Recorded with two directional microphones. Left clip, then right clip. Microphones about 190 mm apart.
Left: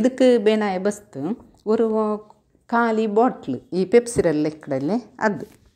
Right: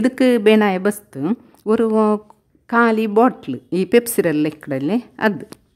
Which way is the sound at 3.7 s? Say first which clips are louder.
Right 2 dB; 45° right (ahead or behind).